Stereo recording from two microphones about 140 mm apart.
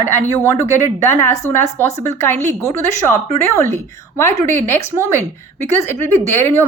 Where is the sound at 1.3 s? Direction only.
20° left (ahead or behind).